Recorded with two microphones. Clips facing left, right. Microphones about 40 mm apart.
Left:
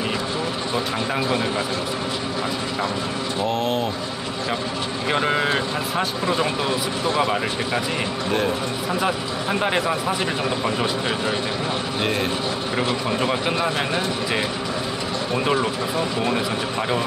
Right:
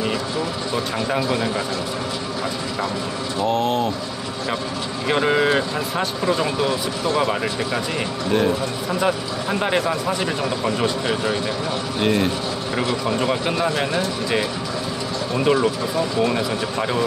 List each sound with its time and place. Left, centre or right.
3.4 s speech: centre
5.0 s speech: centre
6.3 s speech: left
7.2 s speech: centre
9.0 s speech: centre
15.3 s speech: centre
16.7 s speech: centre